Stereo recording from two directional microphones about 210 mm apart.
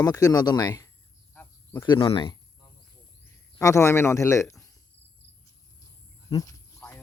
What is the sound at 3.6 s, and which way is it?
Speech, 15° left (ahead or behind).